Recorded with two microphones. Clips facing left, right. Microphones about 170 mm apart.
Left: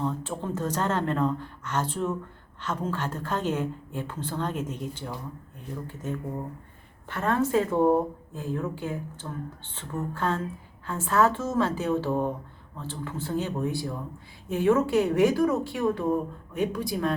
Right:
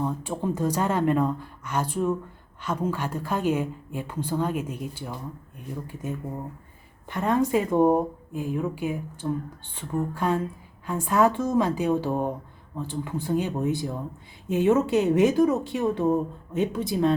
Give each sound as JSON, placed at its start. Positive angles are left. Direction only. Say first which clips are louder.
{"t": 0.0, "sound": "a woman's voice", "louder": "right 2 dB", "side_deg": -10}